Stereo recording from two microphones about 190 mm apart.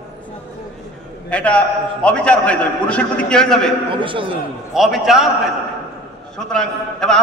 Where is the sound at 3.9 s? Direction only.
25° right (ahead or behind).